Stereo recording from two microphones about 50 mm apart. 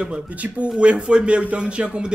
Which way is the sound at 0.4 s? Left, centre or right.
Right.